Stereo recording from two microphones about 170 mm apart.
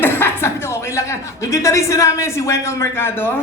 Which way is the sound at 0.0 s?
15° left (ahead or behind).